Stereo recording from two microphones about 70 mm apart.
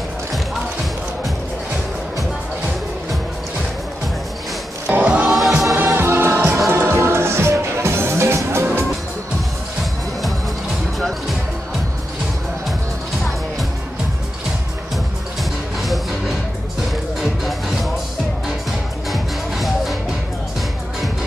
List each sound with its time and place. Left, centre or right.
4.8 s music: centre
5.2 s choir: centre
5.9 s music: right
11.0 s music: centre
15.8 s music: centre
19.0 s music: centre